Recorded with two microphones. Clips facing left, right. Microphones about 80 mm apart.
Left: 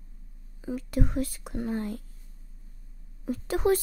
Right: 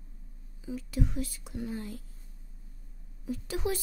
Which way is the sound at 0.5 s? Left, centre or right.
Left.